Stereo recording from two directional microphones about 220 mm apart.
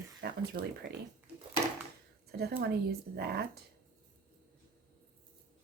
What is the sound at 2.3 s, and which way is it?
Speech, 45° right (ahead or behind).